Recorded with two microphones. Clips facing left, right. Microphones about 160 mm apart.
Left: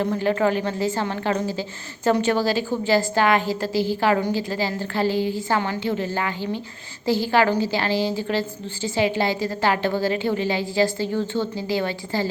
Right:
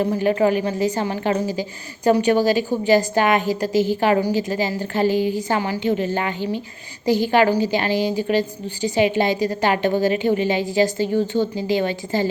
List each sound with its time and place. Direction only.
0.2 s a woman's voice: 15° right (ahead or behind)